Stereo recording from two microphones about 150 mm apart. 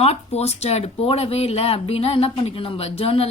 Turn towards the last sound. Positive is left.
turn(degrees=40)  # may be behind; listen again after turning